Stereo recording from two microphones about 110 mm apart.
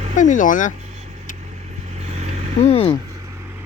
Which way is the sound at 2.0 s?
90° right.